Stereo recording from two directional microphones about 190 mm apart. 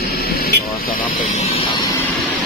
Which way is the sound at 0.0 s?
55° left (ahead or behind).